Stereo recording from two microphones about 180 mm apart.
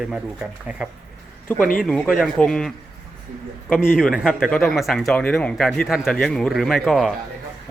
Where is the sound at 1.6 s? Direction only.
50° left (ahead or behind).